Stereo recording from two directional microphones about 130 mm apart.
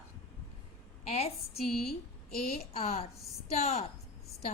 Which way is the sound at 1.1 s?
50° left (ahead or behind).